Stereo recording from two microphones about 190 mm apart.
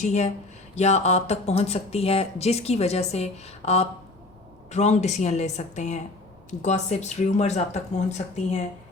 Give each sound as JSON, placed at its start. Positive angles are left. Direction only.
{"t": 0.0, "sound": "speech", "side_deg": 35}